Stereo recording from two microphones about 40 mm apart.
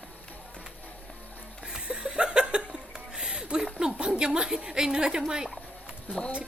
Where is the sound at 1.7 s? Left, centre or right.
Right.